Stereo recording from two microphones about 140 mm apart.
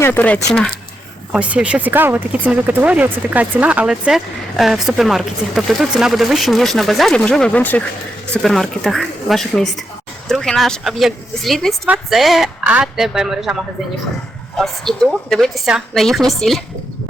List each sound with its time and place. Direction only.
0.0 s speech: 15° left (ahead or behind)
1.3 s speech: 10° right (ahead or behind)